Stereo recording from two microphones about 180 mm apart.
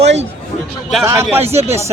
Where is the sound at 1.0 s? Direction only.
15° right (ahead or behind).